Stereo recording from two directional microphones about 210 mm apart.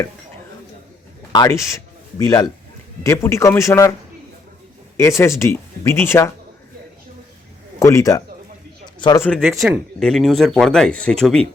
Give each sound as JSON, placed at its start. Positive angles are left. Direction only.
{"t": 1.3, "sound": "speech", "side_deg": 15}
{"t": 4.9, "sound": "speech", "side_deg": 15}
{"t": 7.8, "sound": "a man's voice", "side_deg": 15}
{"t": 9.2, "sound": "speech", "side_deg": 0}